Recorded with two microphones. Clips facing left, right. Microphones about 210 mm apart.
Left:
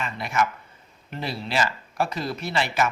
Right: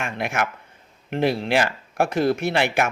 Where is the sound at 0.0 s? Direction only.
70° right (ahead or behind).